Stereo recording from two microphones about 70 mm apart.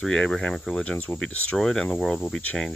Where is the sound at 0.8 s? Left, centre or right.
Left.